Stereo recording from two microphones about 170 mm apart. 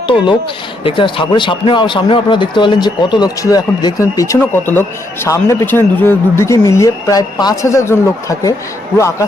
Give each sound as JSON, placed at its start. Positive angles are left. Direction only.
{"t": 0.9, "sound": "speech", "side_deg": 30}